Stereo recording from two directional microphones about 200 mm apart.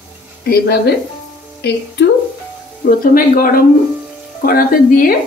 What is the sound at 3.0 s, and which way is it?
Speech, 45° left (ahead or behind).